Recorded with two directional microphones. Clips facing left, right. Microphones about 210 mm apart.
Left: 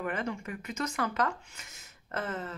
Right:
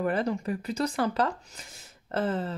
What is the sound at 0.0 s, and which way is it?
Speech, 35° right (ahead or behind).